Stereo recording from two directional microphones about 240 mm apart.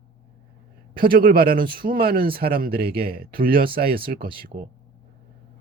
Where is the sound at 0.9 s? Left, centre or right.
Right.